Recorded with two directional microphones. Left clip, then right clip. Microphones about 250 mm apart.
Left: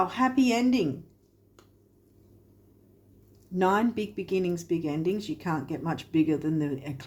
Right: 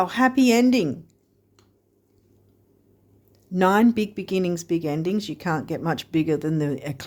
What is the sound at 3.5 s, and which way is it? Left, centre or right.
Speech, right.